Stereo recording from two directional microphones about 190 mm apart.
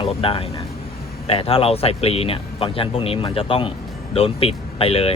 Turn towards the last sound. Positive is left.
turn(degrees=30)  # may be behind; listen again after turning